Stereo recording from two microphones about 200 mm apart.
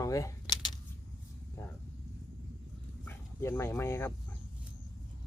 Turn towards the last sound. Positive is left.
turn(degrees=15)  # may be behind; listen again after turning